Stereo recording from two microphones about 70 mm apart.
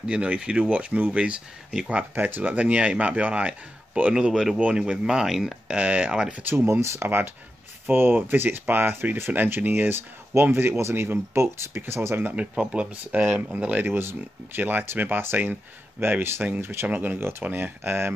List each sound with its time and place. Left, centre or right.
0.0 s speech: centre
5.8 s speech: centre
6.4 s speech: right
7.8 s speech: right
12.2 s speech: right